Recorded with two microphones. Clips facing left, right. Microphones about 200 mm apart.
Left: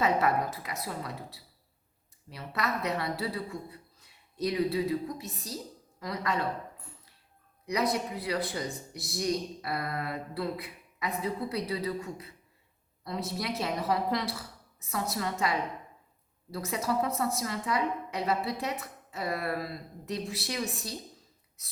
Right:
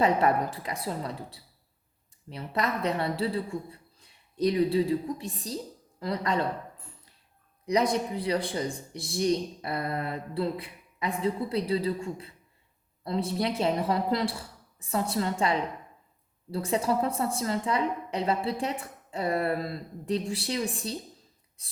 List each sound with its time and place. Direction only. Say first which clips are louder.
0.0 s a woman's voice: right 3 dB; 30° right (ahead or behind)
7.6 s a woman's voice: right 4 dB; 30° right (ahead or behind)